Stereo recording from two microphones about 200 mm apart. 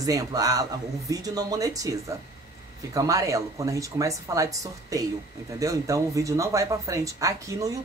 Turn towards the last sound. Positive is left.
turn(degrees=-15)  # may be behind; listen again after turning